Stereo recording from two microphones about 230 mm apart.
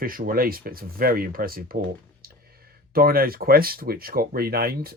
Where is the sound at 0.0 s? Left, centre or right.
Right.